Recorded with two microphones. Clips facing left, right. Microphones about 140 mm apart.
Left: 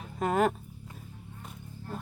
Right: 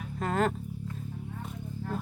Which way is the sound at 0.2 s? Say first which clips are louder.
Left 2 dB; 15° left (ahead or behind).